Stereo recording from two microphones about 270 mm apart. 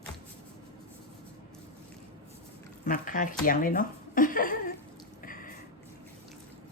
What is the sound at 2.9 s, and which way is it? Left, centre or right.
Speech, left.